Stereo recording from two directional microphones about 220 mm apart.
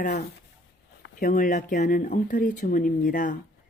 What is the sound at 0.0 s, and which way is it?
A woman's voice, 45° left (ahead or behind).